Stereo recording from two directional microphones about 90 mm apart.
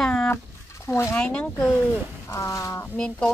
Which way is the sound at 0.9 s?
30° left (ahead or behind).